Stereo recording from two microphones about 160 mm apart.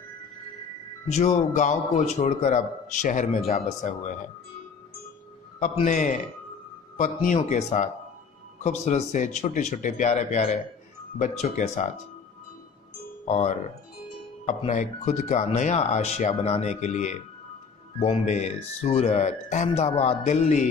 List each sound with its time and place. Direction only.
1.0 s a man's voice: 45° left (ahead or behind)
5.9 s a man's voice: 50° left (ahead or behind)
13.2 s speech: 45° left (ahead or behind)
14.7 s a man's voice: 50° left (ahead or behind)